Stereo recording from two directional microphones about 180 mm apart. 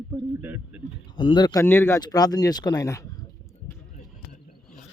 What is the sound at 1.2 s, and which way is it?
Speech, 25° left (ahead or behind).